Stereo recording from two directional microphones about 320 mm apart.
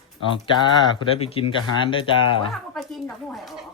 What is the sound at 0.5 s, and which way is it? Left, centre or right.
Speech, centre.